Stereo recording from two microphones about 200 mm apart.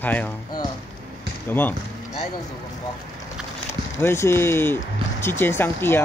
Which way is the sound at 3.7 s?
15° left (ahead or behind).